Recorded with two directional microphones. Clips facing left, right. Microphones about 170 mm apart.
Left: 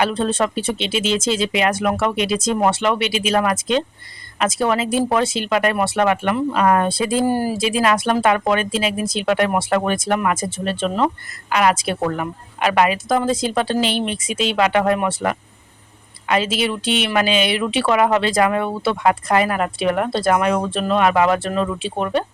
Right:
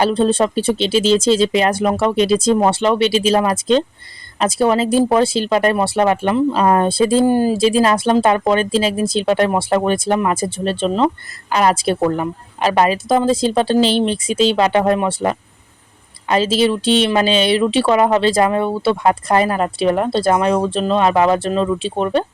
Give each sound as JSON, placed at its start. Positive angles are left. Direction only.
{"t": 0.0, "sound": "speech", "side_deg": -30}